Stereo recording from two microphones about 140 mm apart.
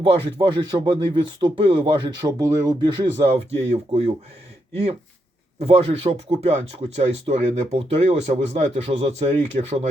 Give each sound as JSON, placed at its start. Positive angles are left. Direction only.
{"t": 0.0, "sound": "speech", "side_deg": -35}
{"t": 3.6, "sound": "speech", "side_deg": -50}